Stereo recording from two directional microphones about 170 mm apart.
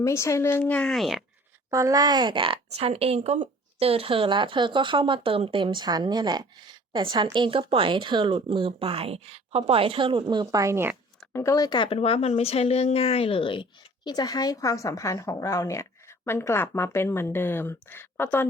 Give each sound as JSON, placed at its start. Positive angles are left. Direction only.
{"t": 0.0, "sound": "a woman's voice", "side_deg": 15}
{"t": 1.7, "sound": "speech", "side_deg": -20}
{"t": 11.3, "sound": "speech", "side_deg": 20}